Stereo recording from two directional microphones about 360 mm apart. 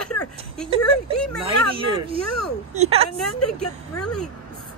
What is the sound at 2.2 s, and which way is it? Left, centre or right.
Speech, left.